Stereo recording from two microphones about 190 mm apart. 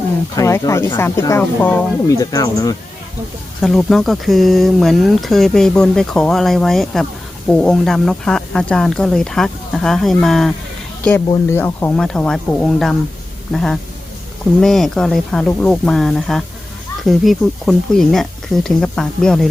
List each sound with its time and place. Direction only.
0.3 s speech: 15° left (ahead or behind)
3.6 s speech: centre (ahead or behind)